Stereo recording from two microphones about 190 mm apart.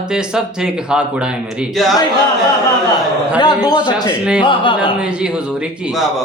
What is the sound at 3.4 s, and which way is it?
A man's voice, 20° left (ahead or behind).